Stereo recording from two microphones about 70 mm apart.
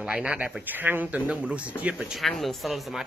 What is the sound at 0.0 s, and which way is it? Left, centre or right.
Speech, centre.